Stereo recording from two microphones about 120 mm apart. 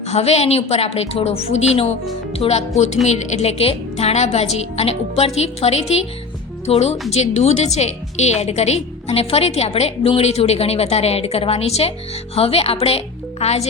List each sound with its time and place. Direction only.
0.1 s a woman's voice: 60° left (ahead or behind)